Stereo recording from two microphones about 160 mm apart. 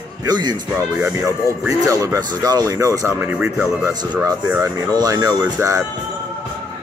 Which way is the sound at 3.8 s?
25° right (ahead or behind).